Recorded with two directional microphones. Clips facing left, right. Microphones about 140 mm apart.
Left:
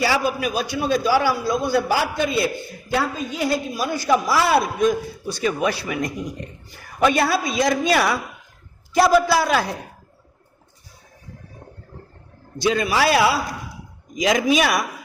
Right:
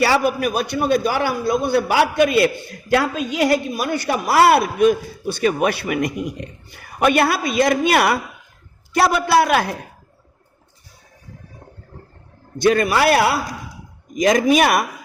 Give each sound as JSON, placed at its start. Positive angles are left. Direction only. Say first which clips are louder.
{"t": 0.0, "sound": "a woman's voice", "louder": "right 4 dB", "side_deg": -60}
{"t": 12.5, "sound": "a woman's voice", "louder": "right 4 dB", "side_deg": -55}